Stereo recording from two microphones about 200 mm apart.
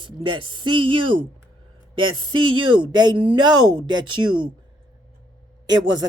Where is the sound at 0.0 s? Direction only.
25° right (ahead or behind).